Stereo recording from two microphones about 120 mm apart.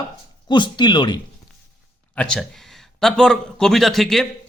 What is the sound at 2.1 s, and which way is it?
A man's voice, 5° left (ahead or behind).